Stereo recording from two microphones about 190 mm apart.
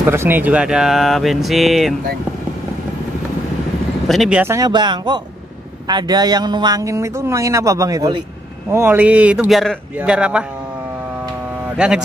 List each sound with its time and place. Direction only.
0.0 s speech: 10° right (ahead or behind)
4.1 s a man's voice: 5° right (ahead or behind)
11.6 s speech: 5° right (ahead or behind)